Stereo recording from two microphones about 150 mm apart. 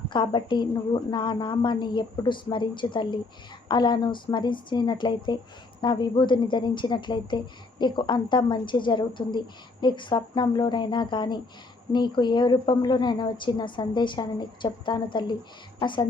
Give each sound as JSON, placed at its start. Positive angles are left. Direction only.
{"t": 0.1, "sound": "a woman's voice", "side_deg": 30}